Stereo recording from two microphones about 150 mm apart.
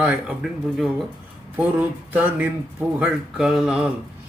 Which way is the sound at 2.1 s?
10° right (ahead or behind).